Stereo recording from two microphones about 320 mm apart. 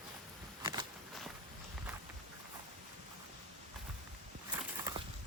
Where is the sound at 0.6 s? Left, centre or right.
Centre.